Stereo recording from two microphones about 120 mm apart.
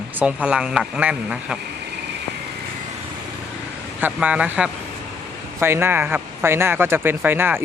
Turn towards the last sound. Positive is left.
turn(degrees=-15)  # may be behind; listen again after turning